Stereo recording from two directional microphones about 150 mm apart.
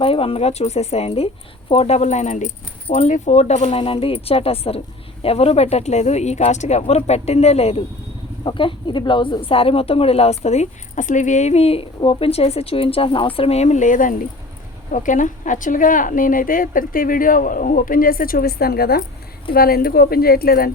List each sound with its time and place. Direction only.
0.0 s a woman's voice: 40° left (ahead or behind)
8.4 s a woman's voice: 35° left (ahead or behind); by 20.7 s 90° left